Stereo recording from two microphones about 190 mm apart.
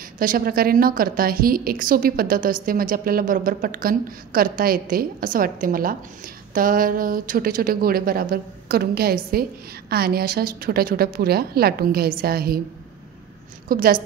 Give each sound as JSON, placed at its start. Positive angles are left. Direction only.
{"t": 0.2, "sound": "a woman's voice", "side_deg": -50}
{"t": 13.7, "sound": "a woman's voice", "side_deg": -50}